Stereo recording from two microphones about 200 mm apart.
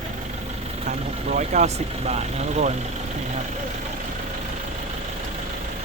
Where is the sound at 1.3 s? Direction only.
35° right (ahead or behind).